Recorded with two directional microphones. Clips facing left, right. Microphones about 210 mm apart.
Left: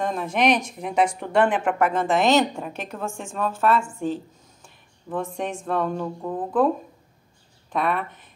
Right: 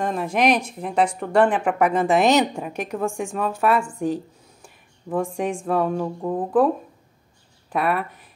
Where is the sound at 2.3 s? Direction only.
15° right (ahead or behind).